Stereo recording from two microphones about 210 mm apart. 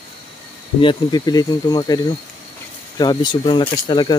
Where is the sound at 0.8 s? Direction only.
20° left (ahead or behind).